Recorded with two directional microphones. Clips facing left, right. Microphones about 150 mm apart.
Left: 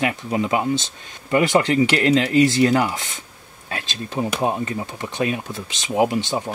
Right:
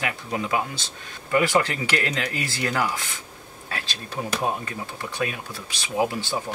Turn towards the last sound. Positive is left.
turn(degrees=20)  # may be behind; listen again after turning